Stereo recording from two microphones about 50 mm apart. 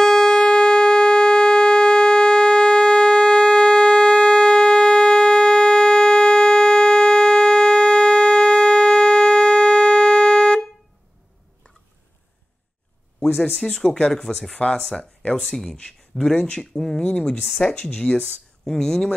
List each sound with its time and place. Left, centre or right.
0.0 s siren: centre
13.6 s speech: centre
15.4 s speech: centre
17.0 s speech: centre
17.5 s speech: centre
17.7 s speech: centre